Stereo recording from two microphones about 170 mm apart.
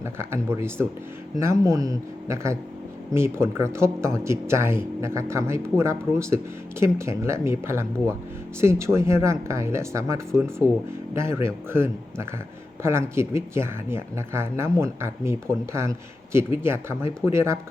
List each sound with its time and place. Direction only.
0.0 s speech: 15° right (ahead or behind)